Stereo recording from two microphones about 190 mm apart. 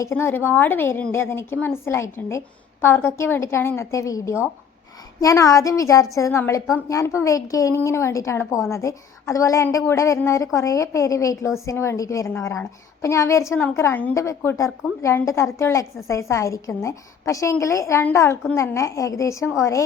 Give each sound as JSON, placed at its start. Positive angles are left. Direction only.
{"t": 0.0, "sound": "a woman's voice", "side_deg": 15}